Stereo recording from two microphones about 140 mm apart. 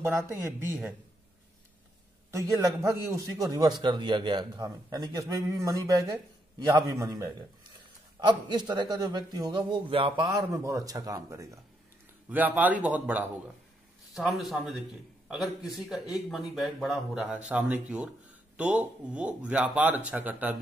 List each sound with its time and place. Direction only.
0.0 s speech: 20° right (ahead or behind)
2.3 s a man's voice: 25° right (ahead or behind)
8.2 s a man's voice: 35° right (ahead or behind)
12.3 s speech: 10° right (ahead or behind)
14.1 s speech: centre (ahead or behind)